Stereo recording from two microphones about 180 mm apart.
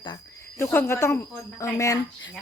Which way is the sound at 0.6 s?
10° left (ahead or behind).